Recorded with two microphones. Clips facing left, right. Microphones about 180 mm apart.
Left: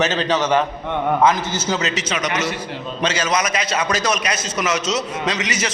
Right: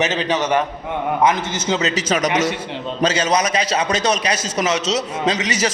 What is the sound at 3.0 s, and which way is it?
A man's voice, 35° right (ahead or behind).